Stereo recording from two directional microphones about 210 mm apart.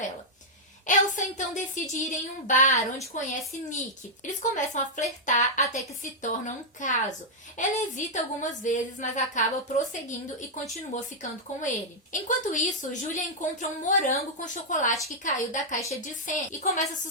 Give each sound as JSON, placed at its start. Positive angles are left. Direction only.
{"t": 0.9, "sound": "a woman's voice", "side_deg": 35}
{"t": 4.5, "sound": "a woman's voice", "side_deg": 35}